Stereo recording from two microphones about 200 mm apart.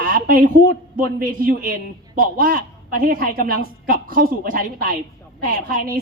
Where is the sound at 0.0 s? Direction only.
45° right (ahead or behind).